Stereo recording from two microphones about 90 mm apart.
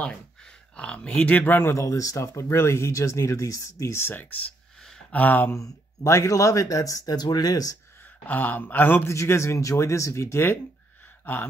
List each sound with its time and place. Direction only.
0.7 s speech: 10° left (ahead or behind)
4.8 s a sound: 15° left (ahead or behind)
5.6 s speech: 35° left (ahead or behind)
8.3 s a man's voice: 20° left (ahead or behind)
9.1 s a man's voice: 35° left (ahead or behind)